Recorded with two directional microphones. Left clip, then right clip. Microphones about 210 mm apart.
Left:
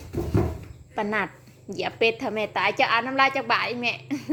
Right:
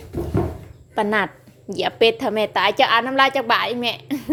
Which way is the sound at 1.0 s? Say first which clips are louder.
Right 6 dB; 25° right (ahead or behind).